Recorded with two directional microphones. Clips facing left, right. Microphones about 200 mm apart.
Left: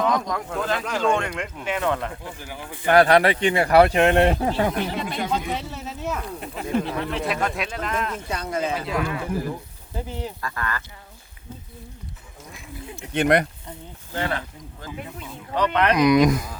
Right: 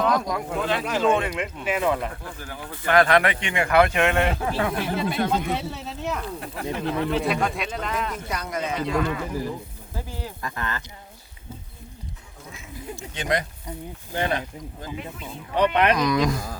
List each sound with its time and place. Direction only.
0.0 s speech: 5° right (ahead or behind)
2.2 s speech: 15° left (ahead or behind)
2.8 s a man's voice: 35° left (ahead or behind)
4.8 s speech: 5° right (ahead or behind)
6.4 s speech: 20° left (ahead or behind)
7.1 s speech: centre (ahead or behind)
8.3 s speech: 30° left (ahead or behind)
8.9 s speech: 5° left (ahead or behind)
9.9 s speech: 20° left (ahead or behind)
10.4 s speech: 20° right (ahead or behind)
13.0 s speech: 60° left (ahead or behind)
13.7 s speech: 15° right (ahead or behind)
16.0 s speech: 20° left (ahead or behind)